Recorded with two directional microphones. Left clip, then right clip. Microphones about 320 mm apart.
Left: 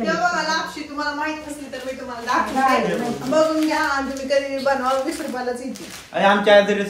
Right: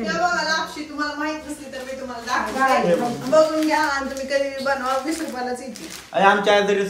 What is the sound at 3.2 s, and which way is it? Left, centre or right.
A man's voice, centre.